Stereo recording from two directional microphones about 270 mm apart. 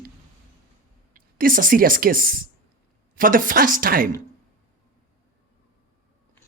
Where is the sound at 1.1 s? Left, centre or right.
Right.